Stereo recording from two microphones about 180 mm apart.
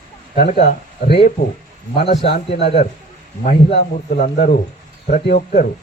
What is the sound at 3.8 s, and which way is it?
Speech, 60° left (ahead or behind).